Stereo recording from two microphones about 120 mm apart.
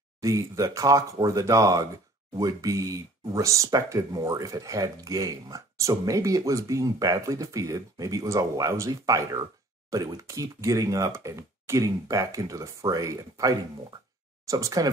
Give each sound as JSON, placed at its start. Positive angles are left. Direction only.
{"t": 0.2, "sound": "speech", "side_deg": -25}